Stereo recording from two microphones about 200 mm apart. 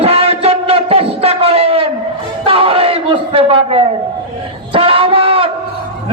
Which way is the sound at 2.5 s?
25° right (ahead or behind).